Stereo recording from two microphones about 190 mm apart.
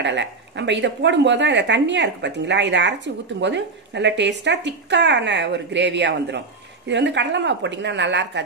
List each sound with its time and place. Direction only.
0.0 s speech: 70° right (ahead or behind)